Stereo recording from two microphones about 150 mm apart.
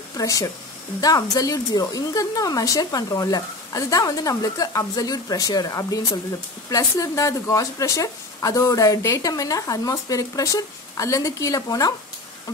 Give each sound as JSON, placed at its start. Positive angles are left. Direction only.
{"t": 0.2, "sound": "speech", "side_deg": 20}